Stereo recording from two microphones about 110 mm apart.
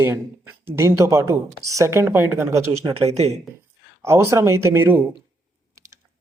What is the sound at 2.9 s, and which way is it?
Speech, 70° right (ahead or behind).